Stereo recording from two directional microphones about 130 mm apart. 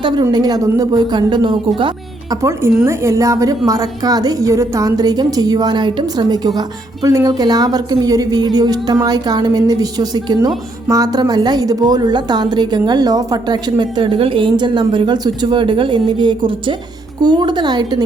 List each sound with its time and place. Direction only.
0.0 s a woman's voice: 35° right (ahead or behind)
2.3 s a woman's voice: 25° right (ahead or behind)